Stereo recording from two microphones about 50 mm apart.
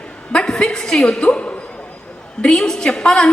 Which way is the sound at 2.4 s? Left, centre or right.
Centre.